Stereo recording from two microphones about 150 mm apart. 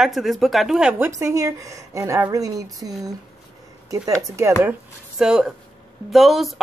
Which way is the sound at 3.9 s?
20° right (ahead or behind).